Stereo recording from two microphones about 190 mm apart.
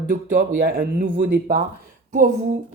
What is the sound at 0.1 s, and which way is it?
Speech, 45° right (ahead or behind).